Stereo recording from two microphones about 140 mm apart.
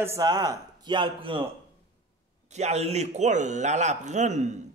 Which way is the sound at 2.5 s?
50° right (ahead or behind).